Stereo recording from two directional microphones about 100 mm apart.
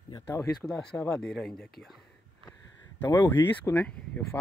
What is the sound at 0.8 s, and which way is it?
Speech, 5° left (ahead or behind).